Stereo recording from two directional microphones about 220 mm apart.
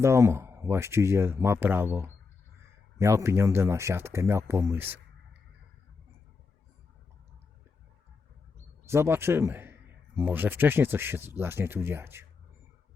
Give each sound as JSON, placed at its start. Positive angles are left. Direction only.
{"t": 0.0, "sound": "speech", "side_deg": -10}
{"t": 8.9, "sound": "speech", "side_deg": -10}